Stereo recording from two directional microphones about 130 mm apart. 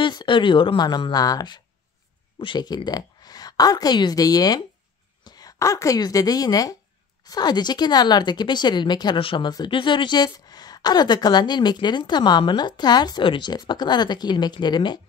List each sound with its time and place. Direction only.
0.0 s a woman's voice: 35° left (ahead or behind)